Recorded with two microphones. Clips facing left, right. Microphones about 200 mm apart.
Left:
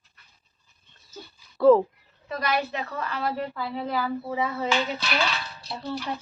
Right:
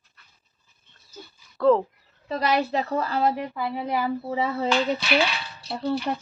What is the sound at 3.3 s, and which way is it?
Speech, 15° right (ahead or behind).